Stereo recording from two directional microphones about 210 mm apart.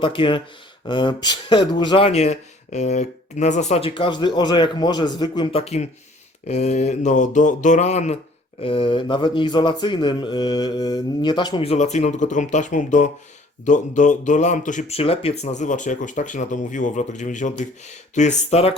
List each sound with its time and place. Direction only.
0.0 s speech: 25° left (ahead or behind)